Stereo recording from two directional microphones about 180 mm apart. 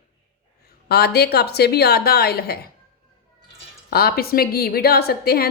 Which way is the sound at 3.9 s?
60° left (ahead or behind).